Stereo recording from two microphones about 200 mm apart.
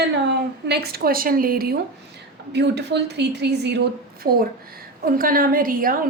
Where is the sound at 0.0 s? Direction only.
55° right (ahead or behind).